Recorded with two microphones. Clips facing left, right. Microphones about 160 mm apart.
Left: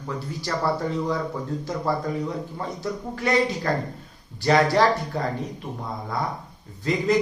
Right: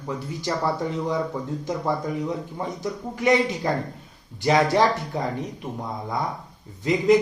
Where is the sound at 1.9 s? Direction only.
20° right (ahead or behind).